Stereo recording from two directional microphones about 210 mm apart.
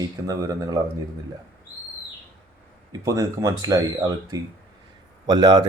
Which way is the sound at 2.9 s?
15° right (ahead or behind).